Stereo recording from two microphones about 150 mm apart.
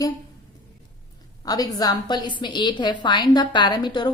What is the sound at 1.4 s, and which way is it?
A woman's voice, 25° left (ahead or behind).